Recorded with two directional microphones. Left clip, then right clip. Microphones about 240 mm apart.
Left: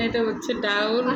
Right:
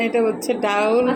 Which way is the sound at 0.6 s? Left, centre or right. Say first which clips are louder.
Right 5 dB; centre.